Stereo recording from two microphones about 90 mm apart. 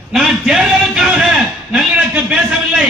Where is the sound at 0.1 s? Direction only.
5° right (ahead or behind).